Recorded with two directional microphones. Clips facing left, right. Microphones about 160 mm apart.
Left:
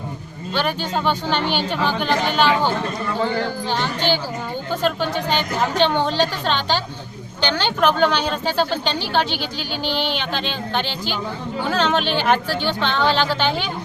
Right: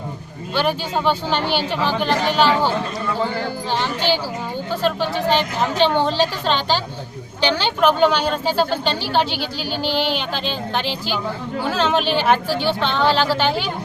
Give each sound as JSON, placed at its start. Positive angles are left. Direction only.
{"t": 0.5, "sound": "a woman's voice", "side_deg": -5}
{"t": 9.3, "sound": "speech", "side_deg": -40}
{"t": 10.2, "sound": "a woman's voice", "side_deg": -5}